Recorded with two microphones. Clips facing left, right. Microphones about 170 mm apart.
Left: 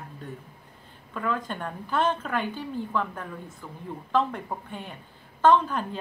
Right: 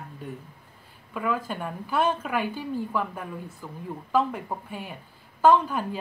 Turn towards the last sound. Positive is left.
turn(degrees=-10)  # may be behind; listen again after turning